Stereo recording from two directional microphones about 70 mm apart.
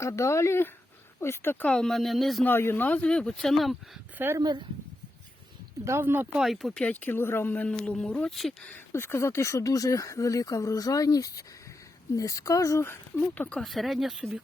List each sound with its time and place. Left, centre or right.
0.0 s speech: left
1.6 s speech: centre
1.9 s speech: centre
2.4 s speech: left
3.1 s speech: centre
4.4 s speech: right
5.8 s speech: right
6.4 s speech: centre
6.9 s speech: left
7.7 s speech: centre
8.9 s speech: left
13.3 s speech: left
13.6 s speech: centre
14.2 s speech: centre